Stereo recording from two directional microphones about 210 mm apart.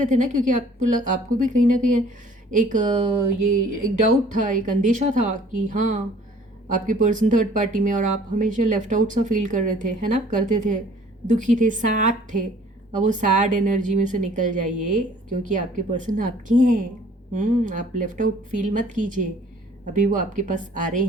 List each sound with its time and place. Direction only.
0.0 s speech: 35° right (ahead or behind)
4.3 s speech: 35° right (ahead or behind)